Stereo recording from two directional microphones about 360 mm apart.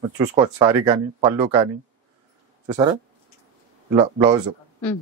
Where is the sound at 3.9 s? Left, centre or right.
Centre.